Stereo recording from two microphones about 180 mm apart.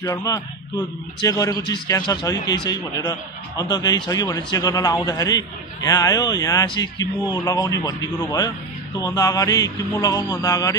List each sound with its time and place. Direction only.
0.0 s speech: 20° left (ahead or behind)